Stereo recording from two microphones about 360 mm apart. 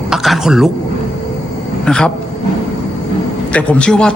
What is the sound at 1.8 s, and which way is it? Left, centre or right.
Speech, centre.